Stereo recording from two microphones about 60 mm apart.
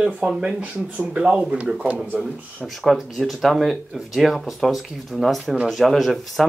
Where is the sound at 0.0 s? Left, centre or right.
Centre.